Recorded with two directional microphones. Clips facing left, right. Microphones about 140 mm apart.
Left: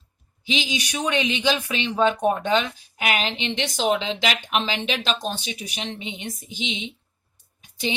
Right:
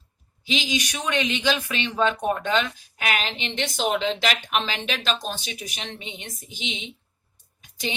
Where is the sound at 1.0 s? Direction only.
10° left (ahead or behind).